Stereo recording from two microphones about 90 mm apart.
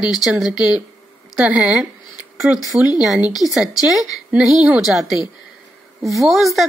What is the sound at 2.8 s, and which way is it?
Speech, 15° right (ahead or behind).